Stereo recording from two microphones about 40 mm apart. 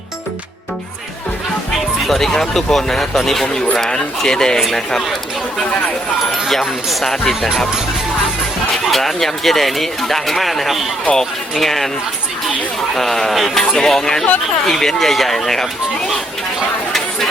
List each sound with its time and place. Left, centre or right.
2.0 s speech: centre
3.4 s speech: centre
6.5 s speech: centre
8.8 s music: centre
9.1 s speech: centre
12.9 s speech: centre